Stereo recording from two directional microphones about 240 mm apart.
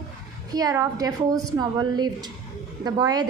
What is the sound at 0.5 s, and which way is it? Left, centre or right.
A woman's voice, centre.